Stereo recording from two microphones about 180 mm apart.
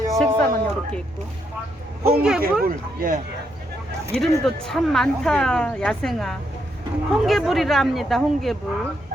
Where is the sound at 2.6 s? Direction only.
50° right (ahead or behind).